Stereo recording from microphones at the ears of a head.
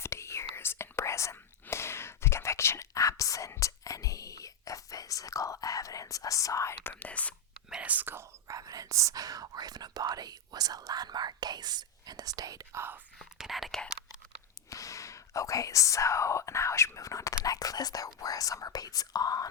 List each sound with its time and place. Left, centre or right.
0.0 s whispering: left
7.9 s whispering: right
14.7 s whispering: left